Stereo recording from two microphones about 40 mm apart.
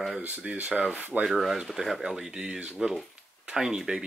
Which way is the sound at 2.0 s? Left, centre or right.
Centre.